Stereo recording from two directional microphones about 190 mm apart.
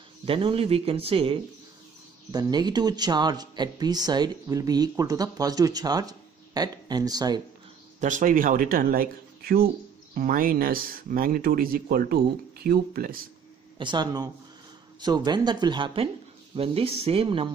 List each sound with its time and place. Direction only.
0.2 s speech: 30° right (ahead or behind)
8.0 s speech: 40° right (ahead or behind)
13.7 s speech: 25° right (ahead or behind)